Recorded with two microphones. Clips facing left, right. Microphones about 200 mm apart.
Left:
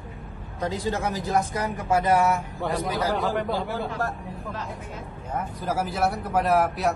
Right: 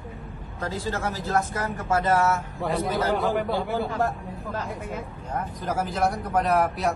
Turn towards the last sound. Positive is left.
turn(degrees=0)  # may be behind; listen again after turning